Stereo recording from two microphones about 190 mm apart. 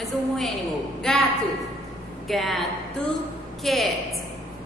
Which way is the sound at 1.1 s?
5° left (ahead or behind).